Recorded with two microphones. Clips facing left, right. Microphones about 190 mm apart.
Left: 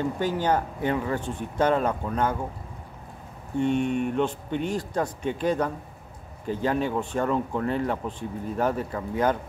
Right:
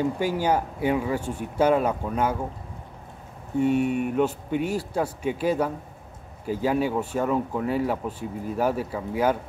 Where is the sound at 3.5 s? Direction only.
5° right (ahead or behind).